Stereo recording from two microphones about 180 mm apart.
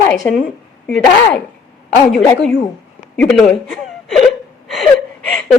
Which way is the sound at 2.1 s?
5° left (ahead or behind).